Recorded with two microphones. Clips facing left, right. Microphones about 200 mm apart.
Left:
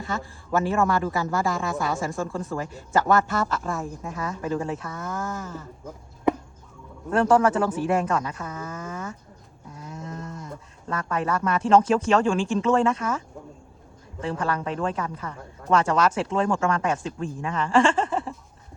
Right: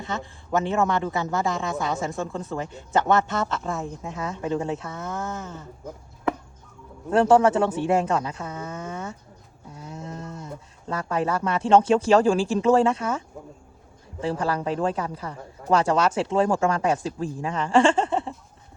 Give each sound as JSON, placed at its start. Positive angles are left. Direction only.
{"t": 0.0, "sound": "speech", "side_deg": -20}
{"t": 7.1, "sound": "speech", "side_deg": -30}
{"t": 9.7, "sound": "a sound", "side_deg": -30}
{"t": 10.8, "sound": "speech", "side_deg": -30}